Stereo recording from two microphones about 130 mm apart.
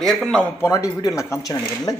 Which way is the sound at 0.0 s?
Centre (ahead or behind).